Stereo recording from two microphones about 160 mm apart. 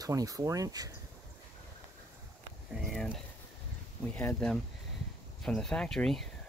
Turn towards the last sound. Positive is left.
turn(degrees=5)  # may be behind; listen again after turning